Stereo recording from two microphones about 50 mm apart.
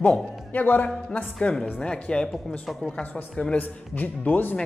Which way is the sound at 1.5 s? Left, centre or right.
Left.